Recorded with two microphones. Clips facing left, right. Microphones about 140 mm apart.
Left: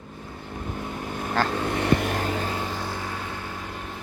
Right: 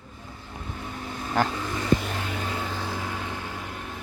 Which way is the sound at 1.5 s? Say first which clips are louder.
Left 2 dB; 65° left (ahead or behind).